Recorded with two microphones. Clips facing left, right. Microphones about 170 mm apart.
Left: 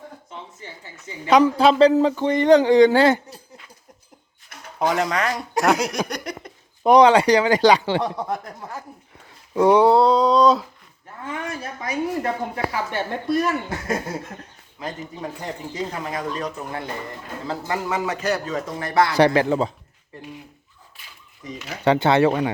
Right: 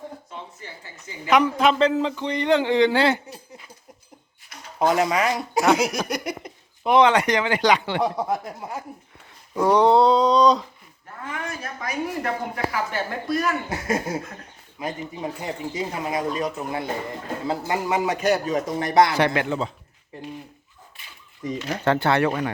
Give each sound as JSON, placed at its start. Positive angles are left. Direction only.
{"t": 0.3, "sound": "a sound", "side_deg": 20}
{"t": 1.3, "sound": "speech", "side_deg": 35}
{"t": 4.8, "sound": "speech", "side_deg": -5}
{"t": 6.8, "sound": "speech", "side_deg": 40}
{"t": 8.0, "sound": "speech", "side_deg": -5}
{"t": 9.6, "sound": "speech", "side_deg": 5}
{"t": 11.3, "sound": "speech", "side_deg": 25}
{"t": 14.8, "sound": "speech", "side_deg": -10}
{"t": 19.1, "sound": "speech", "side_deg": 35}
{"t": 21.8, "sound": "speech", "side_deg": 20}